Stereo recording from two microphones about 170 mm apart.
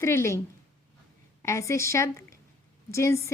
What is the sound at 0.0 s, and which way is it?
A woman's voice, 15° left (ahead or behind).